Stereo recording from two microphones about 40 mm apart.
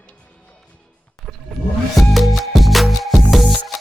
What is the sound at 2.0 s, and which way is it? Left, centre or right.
Music, centre.